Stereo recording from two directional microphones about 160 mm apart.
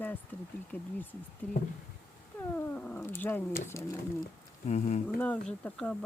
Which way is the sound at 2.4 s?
15° left (ahead or behind).